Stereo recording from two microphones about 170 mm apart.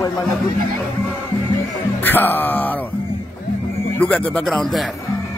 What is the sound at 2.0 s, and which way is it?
Speech, 10° left (ahead or behind).